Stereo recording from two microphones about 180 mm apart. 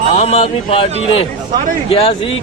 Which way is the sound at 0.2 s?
35° left (ahead or behind).